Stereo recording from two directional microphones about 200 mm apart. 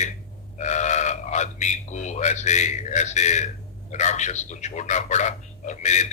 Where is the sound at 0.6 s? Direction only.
35° left (ahead or behind).